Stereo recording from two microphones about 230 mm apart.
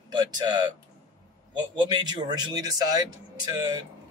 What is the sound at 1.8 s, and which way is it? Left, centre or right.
Speech, centre.